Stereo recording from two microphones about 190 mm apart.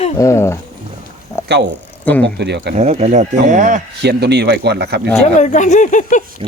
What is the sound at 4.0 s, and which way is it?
Speech, 60° right (ahead or behind).